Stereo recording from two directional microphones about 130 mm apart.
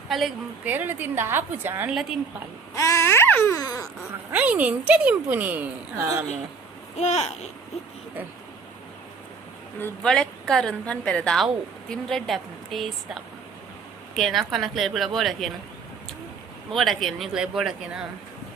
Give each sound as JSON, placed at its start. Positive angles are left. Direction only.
{"t": 0.1, "sound": "a woman's voice", "side_deg": 0}
{"t": 0.6, "sound": "speech", "side_deg": -15}
{"t": 1.9, "sound": "a woman's voice", "side_deg": -5}
{"t": 2.7, "sound": "a sound", "side_deg": 25}
{"t": 3.5, "sound": "dog", "side_deg": 30}
{"t": 4.3, "sound": "speech", "side_deg": -10}
{"t": 6.9, "sound": "babbling", "side_deg": 60}
{"t": 10.0, "sound": "a woman's voice", "side_deg": 5}
{"t": 16.7, "sound": "a woman's voice", "side_deg": 0}